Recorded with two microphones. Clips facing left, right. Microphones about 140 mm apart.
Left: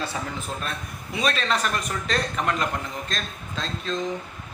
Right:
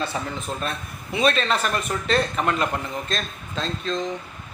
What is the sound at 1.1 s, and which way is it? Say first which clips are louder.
Speech: right 4 dB; centre (ahead or behind).